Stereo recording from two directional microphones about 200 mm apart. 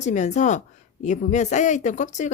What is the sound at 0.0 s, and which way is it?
Speech, 35° left (ahead or behind).